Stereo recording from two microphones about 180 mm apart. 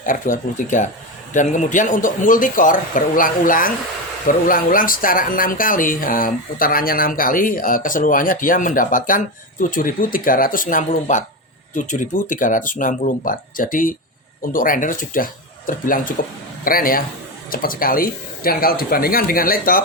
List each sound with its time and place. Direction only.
0.0 s speech: 45° left (ahead or behind)